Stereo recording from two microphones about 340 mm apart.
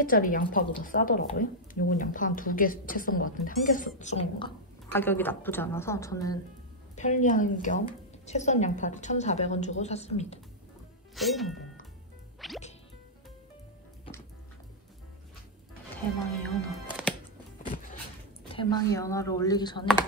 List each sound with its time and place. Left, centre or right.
0.0 s a woman's voice: left
4.9 s a woman's voice: centre
7.0 s a woman's voice: left
11.1 s speech: centre
12.4 s music: centre
16.4 s music: centre
18.5 s a woman's voice: centre